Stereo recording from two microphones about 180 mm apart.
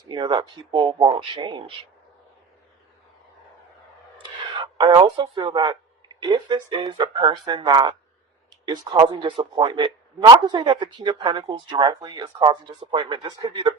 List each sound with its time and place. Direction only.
0.0 s speech: 25° right (ahead or behind)
4.2 s speech: 25° right (ahead or behind)